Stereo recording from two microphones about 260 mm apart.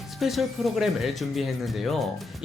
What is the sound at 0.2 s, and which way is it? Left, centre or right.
Speech, centre.